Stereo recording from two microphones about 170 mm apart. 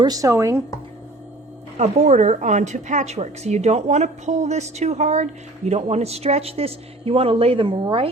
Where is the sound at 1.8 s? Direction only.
40° right (ahead or behind).